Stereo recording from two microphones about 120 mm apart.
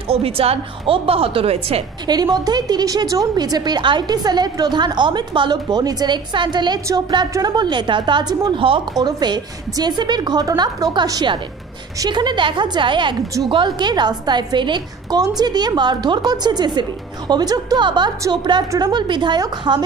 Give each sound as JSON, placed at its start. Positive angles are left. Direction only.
{"t": 0.1, "sound": "a woman's voice", "side_deg": -55}
{"t": 2.0, "sound": "a woman's voice", "side_deg": -35}